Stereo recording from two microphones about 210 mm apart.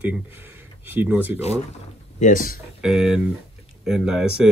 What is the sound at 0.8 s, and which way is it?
Speech, 10° right (ahead or behind).